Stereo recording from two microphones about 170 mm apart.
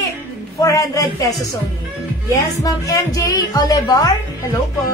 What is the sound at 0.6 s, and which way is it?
Speech, 20° left (ahead or behind).